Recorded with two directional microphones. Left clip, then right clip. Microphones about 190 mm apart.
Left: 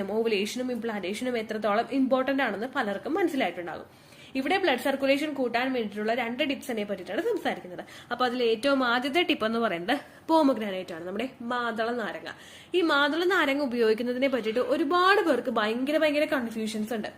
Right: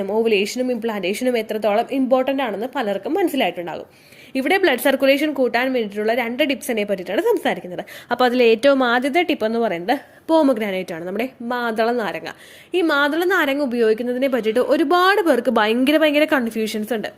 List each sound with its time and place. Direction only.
0.0 s a woman's voice: 35° right (ahead or behind)